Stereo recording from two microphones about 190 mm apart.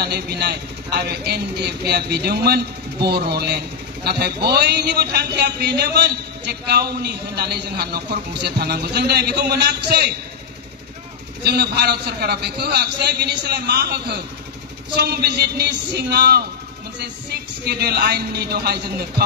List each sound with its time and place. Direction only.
0.0 s a man's voice: 60° right (ahead or behind)
11.4 s a man's voice: 60° right (ahead or behind)